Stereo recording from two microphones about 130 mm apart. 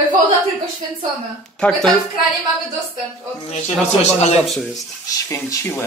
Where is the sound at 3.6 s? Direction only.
60° left (ahead or behind).